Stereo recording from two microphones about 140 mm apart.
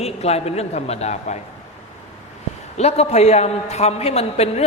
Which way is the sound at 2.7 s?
50° left (ahead or behind).